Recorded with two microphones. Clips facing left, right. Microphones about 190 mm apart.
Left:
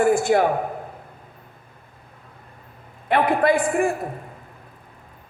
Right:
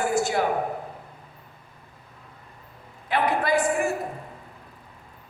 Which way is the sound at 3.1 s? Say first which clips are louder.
Left 5 dB; 55° left (ahead or behind).